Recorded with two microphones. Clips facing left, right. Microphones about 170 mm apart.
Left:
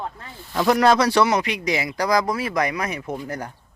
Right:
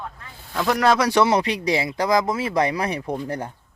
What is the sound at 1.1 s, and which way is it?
Speech, 20° right (ahead or behind).